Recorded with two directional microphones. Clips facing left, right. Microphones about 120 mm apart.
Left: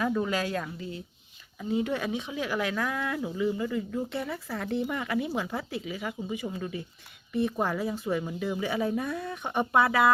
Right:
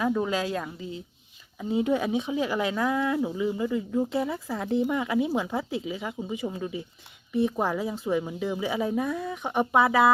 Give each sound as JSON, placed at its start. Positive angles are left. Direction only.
{"t": 0.0, "sound": "speech", "side_deg": -15}